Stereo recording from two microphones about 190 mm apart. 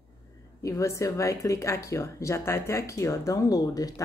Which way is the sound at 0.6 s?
15° left (ahead or behind).